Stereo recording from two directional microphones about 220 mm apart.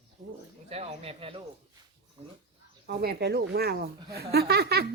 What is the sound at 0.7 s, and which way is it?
Speech, 25° right (ahead or behind).